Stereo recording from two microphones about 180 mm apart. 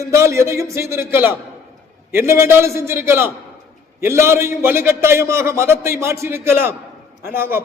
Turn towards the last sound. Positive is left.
turn(degrees=-10)  # may be behind; listen again after turning